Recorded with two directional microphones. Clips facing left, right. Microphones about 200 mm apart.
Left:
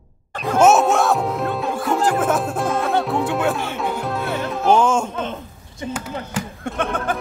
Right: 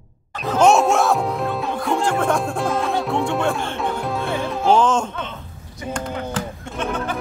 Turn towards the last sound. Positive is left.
turn(degrees=55)  # may be behind; listen again after turning